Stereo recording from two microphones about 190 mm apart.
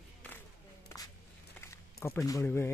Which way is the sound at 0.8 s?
20° left (ahead or behind).